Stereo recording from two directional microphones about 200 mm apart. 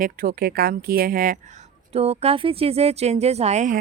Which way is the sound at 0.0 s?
45° right (ahead or behind).